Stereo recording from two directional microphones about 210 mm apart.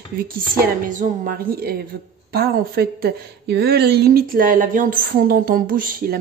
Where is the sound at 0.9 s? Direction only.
40° right (ahead or behind).